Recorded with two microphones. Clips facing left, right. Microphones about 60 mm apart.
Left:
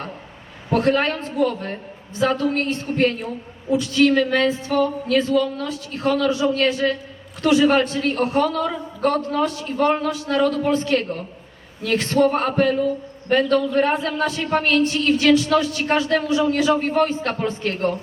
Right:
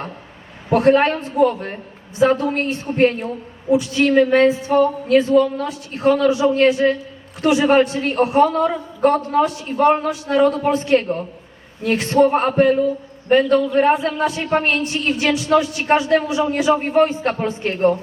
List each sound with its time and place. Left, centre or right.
0.7 s a man's voice: right